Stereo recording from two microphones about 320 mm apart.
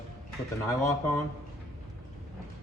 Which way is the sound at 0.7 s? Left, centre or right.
Centre.